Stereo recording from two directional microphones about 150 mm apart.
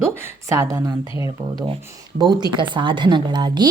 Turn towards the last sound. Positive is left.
turn(degrees=-30)  # may be behind; listen again after turning